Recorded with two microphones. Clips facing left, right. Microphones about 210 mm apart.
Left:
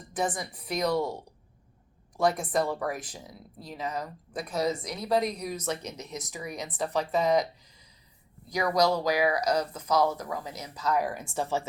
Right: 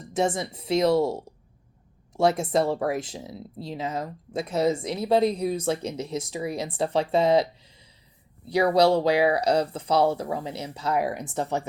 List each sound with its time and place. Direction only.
0.0 s speech: 25° right (ahead or behind)